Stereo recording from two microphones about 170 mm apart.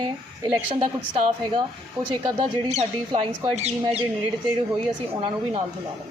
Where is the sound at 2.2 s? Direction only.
35° right (ahead or behind).